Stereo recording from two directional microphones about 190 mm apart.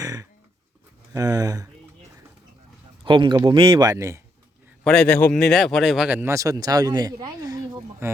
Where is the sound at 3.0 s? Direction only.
25° right (ahead or behind).